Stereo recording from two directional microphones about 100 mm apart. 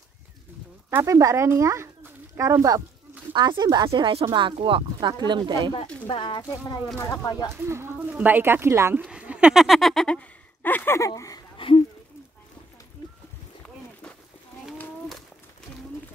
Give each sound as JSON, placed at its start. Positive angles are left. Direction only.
{"t": 0.8, "sound": "speech", "side_deg": -30}
{"t": 3.3, "sound": "speech", "side_deg": -50}
{"t": 3.9, "sound": "speech", "side_deg": -65}
{"t": 6.0, "sound": "speech", "side_deg": 60}
{"t": 7.1, "sound": "speech", "side_deg": 40}
{"t": 7.5, "sound": "speech", "side_deg": -25}
{"t": 9.1, "sound": "speech", "side_deg": -10}
{"t": 11.0, "sound": "speech", "side_deg": 35}
{"t": 11.5, "sound": "a sound", "side_deg": 65}